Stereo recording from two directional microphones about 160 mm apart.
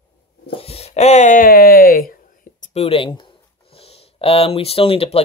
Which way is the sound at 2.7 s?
35° left (ahead or behind).